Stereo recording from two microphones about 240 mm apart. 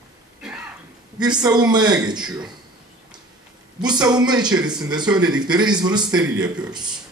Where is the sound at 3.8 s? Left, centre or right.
Centre.